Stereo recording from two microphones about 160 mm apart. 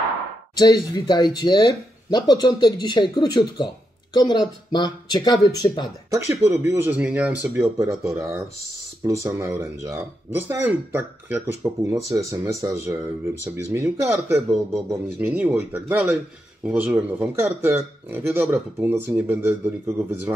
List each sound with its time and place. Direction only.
0.6 s speech: 25° left (ahead or behind)
6.0 s speech: 20° right (ahead or behind)